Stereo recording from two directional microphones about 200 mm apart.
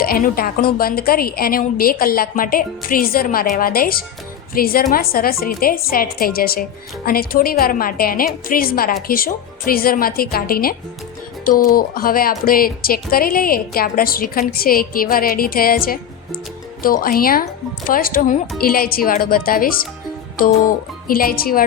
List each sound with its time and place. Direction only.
0.0 s speech: 45° left (ahead or behind)
17.0 s speech: 45° left (ahead or behind)
21.1 s speech: 45° left (ahead or behind)